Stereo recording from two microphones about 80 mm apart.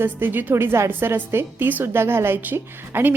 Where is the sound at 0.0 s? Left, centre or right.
Right.